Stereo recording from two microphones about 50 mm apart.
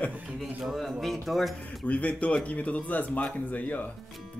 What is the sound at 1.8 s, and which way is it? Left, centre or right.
Speech, left.